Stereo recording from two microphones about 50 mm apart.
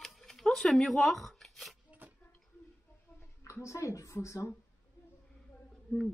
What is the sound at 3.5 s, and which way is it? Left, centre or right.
A woman's voice, left.